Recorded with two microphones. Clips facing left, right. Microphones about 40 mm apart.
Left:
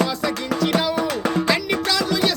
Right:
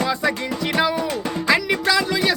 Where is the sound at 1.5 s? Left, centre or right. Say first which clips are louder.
Right 2 dB; centre.